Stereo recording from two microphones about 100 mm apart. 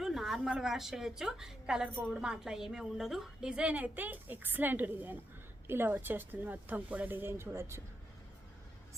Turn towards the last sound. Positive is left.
turn(degrees=-25)  # may be behind; listen again after turning